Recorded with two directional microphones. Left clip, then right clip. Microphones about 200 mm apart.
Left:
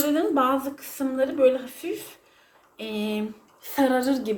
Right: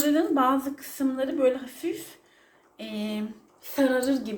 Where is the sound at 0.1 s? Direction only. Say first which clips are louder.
Even; 5° left (ahead or behind).